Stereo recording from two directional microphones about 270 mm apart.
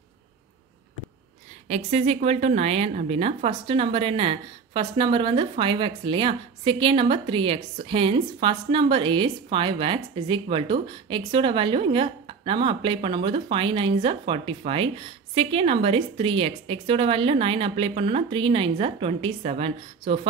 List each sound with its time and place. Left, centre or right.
1.7 s a woman's voice: right